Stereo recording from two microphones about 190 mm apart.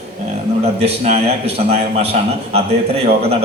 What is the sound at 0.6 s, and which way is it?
A man's voice, 35° right (ahead or behind).